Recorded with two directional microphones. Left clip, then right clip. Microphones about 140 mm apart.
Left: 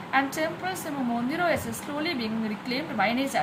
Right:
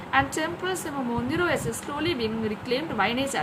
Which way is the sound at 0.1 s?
25° right (ahead or behind).